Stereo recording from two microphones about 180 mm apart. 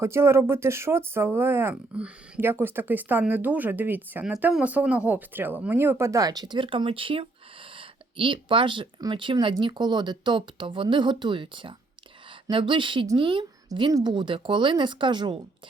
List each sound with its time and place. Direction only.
0.0 s speech: 15° right (ahead or behind)